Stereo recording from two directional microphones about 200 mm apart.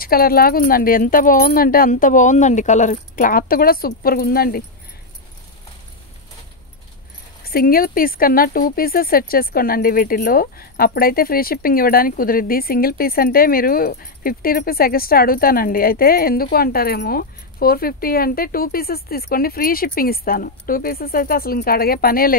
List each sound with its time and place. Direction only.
0.0 s speech: 50° left (ahead or behind)
7.4 s speech: 45° left (ahead or behind)